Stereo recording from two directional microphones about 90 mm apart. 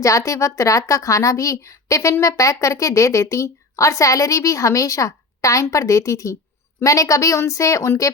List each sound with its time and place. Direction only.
0.0 s speech: 35° left (ahead or behind)